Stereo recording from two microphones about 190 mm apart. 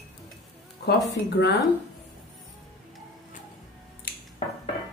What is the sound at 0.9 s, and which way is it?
Speech, 60° left (ahead or behind).